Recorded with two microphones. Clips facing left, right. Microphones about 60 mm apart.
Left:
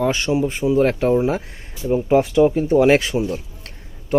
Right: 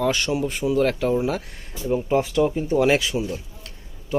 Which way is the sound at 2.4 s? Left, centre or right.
Left.